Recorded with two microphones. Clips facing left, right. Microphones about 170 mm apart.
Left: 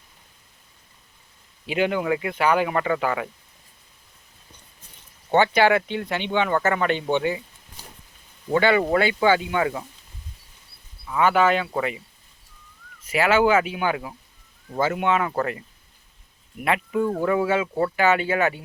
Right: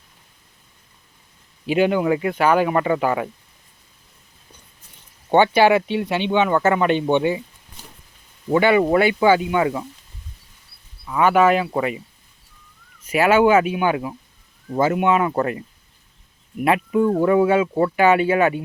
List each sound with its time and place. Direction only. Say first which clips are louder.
1.7 s speech: right 5 dB; 25° right (ahead or behind)
2.4 s speech: right 3 dB; 15° left (ahead or behind)
2.6 s speech: right 4 dB; 25° right (ahead or behind)
5.3 s speech: right 4 dB; 15° right (ahead or behind)
8.4 s speech: right 4 dB; 20° right (ahead or behind)
11.1 s speech: right 3 dB; 20° right (ahead or behind)
13.1 s speech: right 4 dB; 20° right (ahead or behind)
16.6 s speech: right 5 dB; 20° right (ahead or behind)